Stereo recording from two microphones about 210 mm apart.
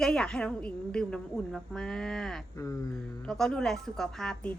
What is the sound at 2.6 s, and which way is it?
Speech, 15° left (ahead or behind).